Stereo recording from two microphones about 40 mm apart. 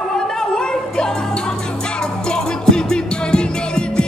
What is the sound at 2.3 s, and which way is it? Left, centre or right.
Music, centre.